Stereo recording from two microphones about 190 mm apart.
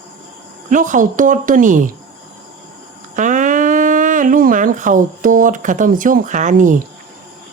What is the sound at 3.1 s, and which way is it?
Speech, 40° right (ahead or behind).